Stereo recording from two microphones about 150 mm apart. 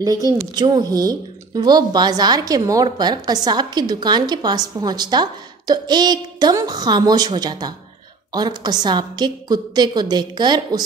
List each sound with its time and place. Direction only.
0.6 s a woman's voice: 25° right (ahead or behind)